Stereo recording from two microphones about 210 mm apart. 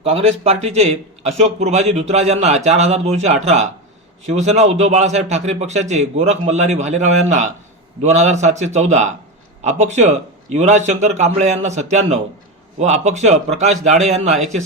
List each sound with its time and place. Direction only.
0.0 s a man's voice: 30° right (ahead or behind)